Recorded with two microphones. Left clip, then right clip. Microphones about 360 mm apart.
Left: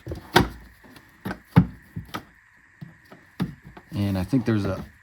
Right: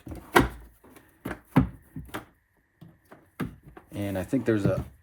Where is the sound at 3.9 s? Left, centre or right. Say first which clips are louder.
Left 3 dB; left.